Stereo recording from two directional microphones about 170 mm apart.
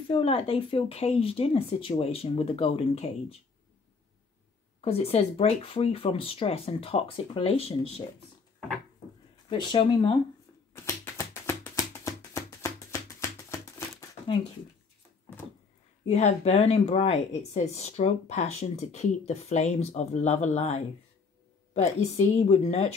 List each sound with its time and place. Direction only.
0.1 s speech: 30° left (ahead or behind)
4.8 s speech: 35° left (ahead or behind)
9.5 s speech: 25° left (ahead or behind)
10.7 s music: 15° left (ahead or behind)
16.1 s speech: 40° left (ahead or behind)